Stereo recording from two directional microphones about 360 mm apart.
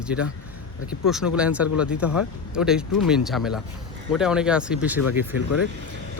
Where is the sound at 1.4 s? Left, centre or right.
Centre.